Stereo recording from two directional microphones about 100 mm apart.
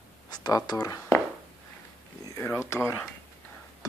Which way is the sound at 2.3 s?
25° left (ahead or behind).